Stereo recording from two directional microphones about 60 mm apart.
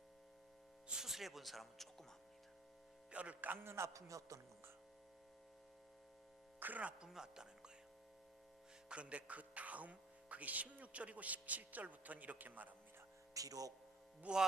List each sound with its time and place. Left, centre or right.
0.9 s speech: centre
3.1 s speech: right
3.5 s speech: right
6.6 s speech: right
7.0 s speech: centre
8.9 s speech: right
13.3 s a man's voice: right
14.2 s speech: centre